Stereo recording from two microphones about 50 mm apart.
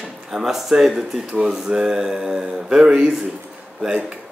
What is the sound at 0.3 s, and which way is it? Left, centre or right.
Mantra, centre.